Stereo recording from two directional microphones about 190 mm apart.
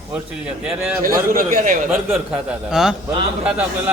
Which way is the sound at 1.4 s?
45° right (ahead or behind).